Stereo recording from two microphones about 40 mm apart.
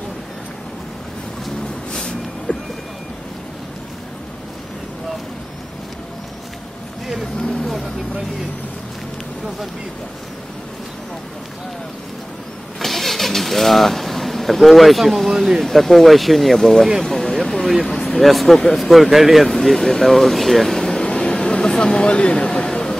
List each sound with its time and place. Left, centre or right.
1.9 s a sound: left
12.8 s vehicle: centre
18.2 s speech: centre
21.1 s vehicle: left
22.0 s speech: left
22.5 s speech: centre